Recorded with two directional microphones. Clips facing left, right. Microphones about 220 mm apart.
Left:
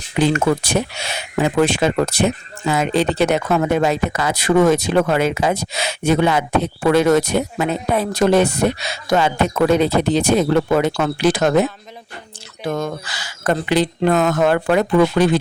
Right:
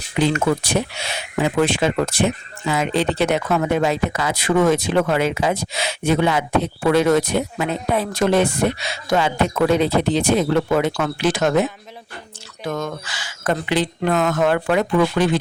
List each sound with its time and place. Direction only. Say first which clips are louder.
0.2 s speech: left 2 dB; 45° left (ahead or behind)
12.6 s speech: left 3 dB; 30° left (ahead or behind)